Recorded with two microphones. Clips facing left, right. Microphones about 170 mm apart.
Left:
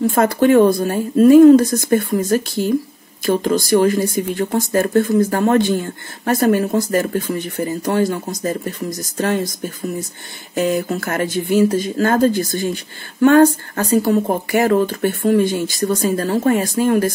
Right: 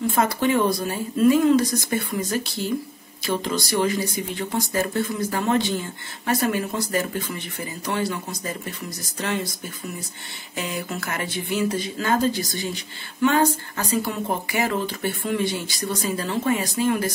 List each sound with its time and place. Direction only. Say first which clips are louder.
0.0 s speech: left 7 dB; 50° left (ahead or behind)
10.5 s speech: left 11 dB; 45° left (ahead or behind)